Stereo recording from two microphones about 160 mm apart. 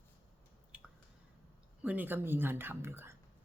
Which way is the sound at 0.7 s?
5° right (ahead or behind).